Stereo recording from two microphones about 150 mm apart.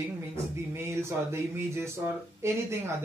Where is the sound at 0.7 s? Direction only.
15° right (ahead or behind).